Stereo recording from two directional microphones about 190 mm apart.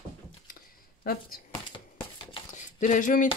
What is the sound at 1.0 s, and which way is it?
Speech, 50° left (ahead or behind).